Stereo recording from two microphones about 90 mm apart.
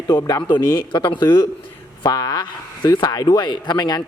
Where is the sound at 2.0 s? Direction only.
50° left (ahead or behind).